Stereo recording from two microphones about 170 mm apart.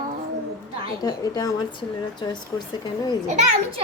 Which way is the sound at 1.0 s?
20° left (ahead or behind).